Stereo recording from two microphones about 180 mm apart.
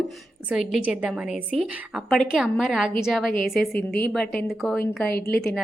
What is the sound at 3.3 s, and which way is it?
Speech, 50° left (ahead or behind).